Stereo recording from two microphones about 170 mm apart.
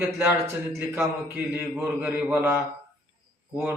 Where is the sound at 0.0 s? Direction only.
15° right (ahead or behind).